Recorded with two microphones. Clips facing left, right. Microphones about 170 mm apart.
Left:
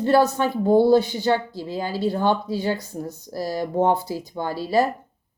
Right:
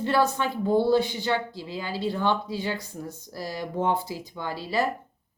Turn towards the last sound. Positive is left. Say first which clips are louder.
# left 7 dB
turn(degrees=40)  # may be behind; listen again after turning